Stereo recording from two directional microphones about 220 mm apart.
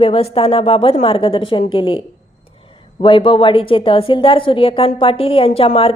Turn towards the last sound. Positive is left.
turn(degrees=25)  # may be behind; listen again after turning